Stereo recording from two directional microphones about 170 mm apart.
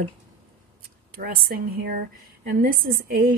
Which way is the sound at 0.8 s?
60° right (ahead or behind).